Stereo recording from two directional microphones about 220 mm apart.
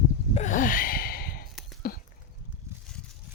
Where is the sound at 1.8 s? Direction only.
45° left (ahead or behind).